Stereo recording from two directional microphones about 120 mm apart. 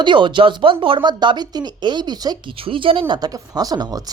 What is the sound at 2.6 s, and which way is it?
Speech, 45° right (ahead or behind).